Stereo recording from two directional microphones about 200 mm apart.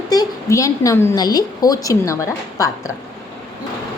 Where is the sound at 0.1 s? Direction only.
15° left (ahead or behind).